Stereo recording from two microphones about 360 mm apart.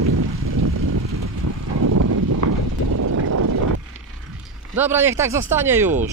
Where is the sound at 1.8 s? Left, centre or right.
Right.